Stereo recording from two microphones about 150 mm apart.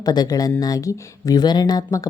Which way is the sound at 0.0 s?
25° left (ahead or behind).